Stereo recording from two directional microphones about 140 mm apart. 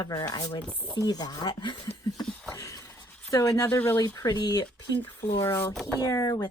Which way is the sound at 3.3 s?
25° left (ahead or behind).